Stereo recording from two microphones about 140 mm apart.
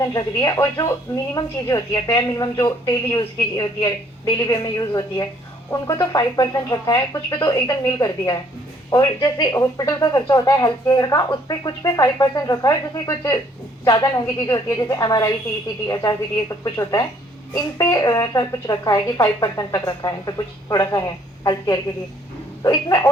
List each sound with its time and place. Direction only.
0.0 s speech: 25° left (ahead or behind)